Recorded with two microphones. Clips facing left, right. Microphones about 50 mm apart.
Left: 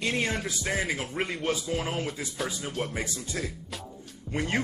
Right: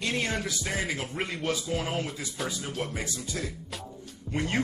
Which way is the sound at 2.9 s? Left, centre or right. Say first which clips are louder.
Left 1 dB; left.